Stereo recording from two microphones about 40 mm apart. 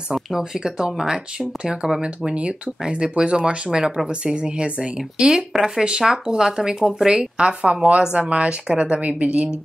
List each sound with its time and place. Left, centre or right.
0.4 s speech: centre
5.2 s speech: centre
7.3 s speech: right
9.0 s a woman's voice: right